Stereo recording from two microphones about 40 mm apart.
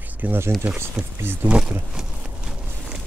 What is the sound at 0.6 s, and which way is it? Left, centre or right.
Speech, right.